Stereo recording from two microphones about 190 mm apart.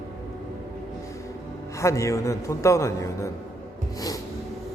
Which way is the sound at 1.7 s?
15° left (ahead or behind).